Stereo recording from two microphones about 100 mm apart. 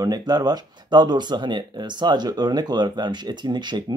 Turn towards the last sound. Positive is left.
turn(degrees=-45)  # may be behind; listen again after turning